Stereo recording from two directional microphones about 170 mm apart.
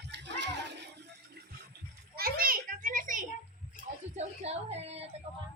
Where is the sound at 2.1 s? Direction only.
60° right (ahead or behind).